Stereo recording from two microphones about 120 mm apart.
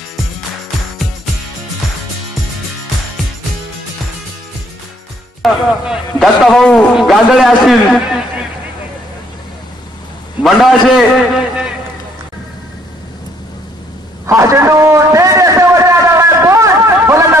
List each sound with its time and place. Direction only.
5.4 s a man's voice: centre (ahead or behind)
10.4 s a man's voice: centre (ahead or behind)
14.2 s a sound: 25° right (ahead or behind)